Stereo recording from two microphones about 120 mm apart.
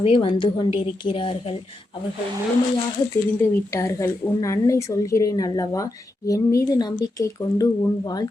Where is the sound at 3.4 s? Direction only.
25° left (ahead or behind).